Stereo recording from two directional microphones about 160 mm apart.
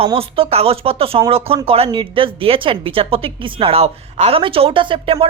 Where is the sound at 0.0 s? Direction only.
35° right (ahead or behind).